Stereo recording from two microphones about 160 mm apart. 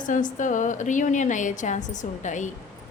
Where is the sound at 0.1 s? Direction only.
55° left (ahead or behind).